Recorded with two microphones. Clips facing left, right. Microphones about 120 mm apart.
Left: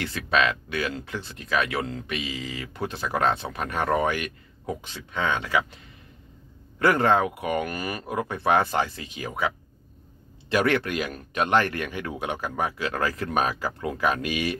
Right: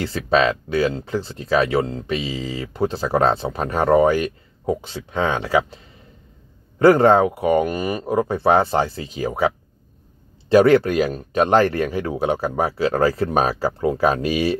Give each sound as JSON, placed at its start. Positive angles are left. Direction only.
{"t": 0.0, "sound": "speech", "side_deg": -35}
{"t": 6.8, "sound": "speech", "side_deg": -30}
{"t": 10.5, "sound": "speech", "side_deg": -30}